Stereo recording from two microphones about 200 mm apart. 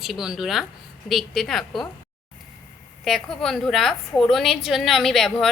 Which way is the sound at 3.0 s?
Centre (ahead or behind).